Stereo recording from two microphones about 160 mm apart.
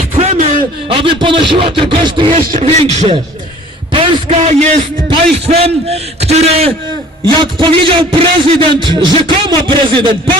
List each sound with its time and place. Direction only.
0.1 s a man's voice: 40° right (ahead or behind)
2.4 s a sound: 55° right (ahead or behind)
3.9 s a man's voice: 35° right (ahead or behind)